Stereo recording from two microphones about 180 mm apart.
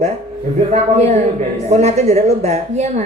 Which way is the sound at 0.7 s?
40° right (ahead or behind).